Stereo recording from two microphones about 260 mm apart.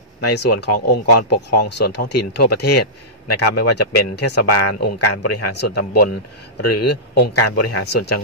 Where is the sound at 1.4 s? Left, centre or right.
Left.